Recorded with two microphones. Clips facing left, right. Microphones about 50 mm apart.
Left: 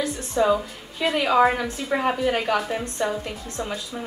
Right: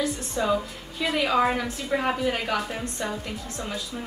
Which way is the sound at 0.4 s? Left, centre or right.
Centre.